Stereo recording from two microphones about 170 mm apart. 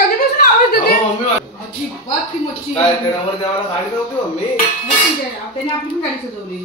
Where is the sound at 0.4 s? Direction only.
60° left (ahead or behind).